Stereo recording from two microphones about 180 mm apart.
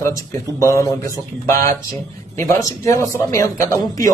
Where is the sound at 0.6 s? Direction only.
15° left (ahead or behind).